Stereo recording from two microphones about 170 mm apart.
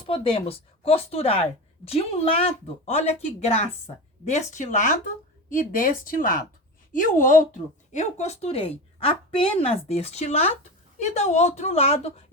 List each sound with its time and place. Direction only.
0.0 s speech: 30° left (ahead or behind)